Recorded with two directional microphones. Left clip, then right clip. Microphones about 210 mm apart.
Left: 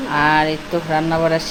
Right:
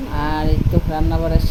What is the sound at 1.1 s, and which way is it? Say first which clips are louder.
Speech: left 6 dB; 25° left (ahead or behind).